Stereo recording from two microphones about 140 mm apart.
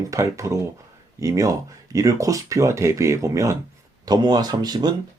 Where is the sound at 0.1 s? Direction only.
20° right (ahead or behind).